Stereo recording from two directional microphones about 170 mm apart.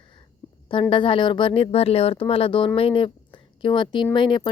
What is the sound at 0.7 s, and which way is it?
A woman's voice, 30° left (ahead or behind).